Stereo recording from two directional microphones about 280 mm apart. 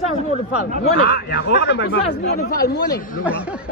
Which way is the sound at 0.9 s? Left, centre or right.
Left.